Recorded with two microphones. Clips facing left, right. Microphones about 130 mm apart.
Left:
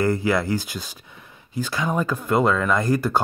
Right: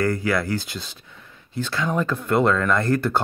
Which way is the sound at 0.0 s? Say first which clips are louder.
Left 1 dB; 20° left (ahead or behind).